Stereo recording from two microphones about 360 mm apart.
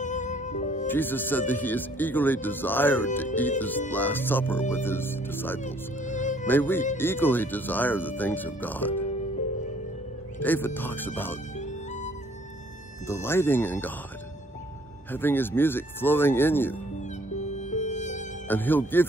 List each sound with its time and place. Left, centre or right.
0.0 s music: centre
0.8 s speech: centre
5.9 s music: left
6.4 s speech: centre
10.4 s speech: centre
13.0 s speech: centre
15.0 s speech: centre
17.3 s music: centre
18.5 s speech: centre